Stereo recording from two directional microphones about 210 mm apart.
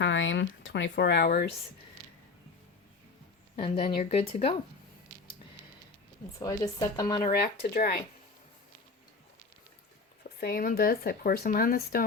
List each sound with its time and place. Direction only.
0.0 s speech: 60° left (ahead or behind); by 1.5 s 45° left (ahead or behind)
3.8 s speech: 30° left (ahead or behind)
6.4 s speech: 15° left (ahead or behind)
7.6 s speech: 45° left (ahead or behind)
10.2 s speech: 50° left (ahead or behind)